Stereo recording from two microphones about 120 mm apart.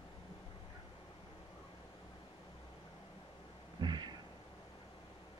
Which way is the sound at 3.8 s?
40° right (ahead or behind).